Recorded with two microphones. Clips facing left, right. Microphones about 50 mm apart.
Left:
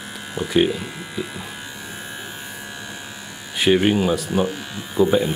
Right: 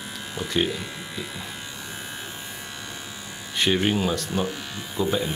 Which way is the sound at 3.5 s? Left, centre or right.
Centre.